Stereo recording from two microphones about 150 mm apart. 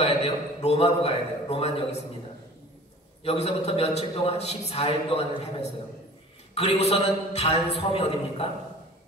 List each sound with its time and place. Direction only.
0.0 s a man's voice: 45° left (ahead or behind)
3.3 s a man's voice: 40° left (ahead or behind)